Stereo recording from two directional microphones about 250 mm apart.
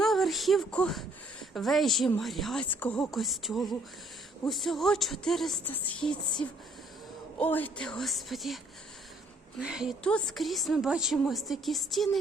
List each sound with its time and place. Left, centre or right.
0.0 s a woman's voice: centre
7.3 s a woman's voice: centre
9.6 s a woman's voice: centre